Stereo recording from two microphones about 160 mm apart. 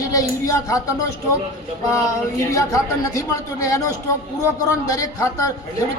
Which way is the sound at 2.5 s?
20° left (ahead or behind).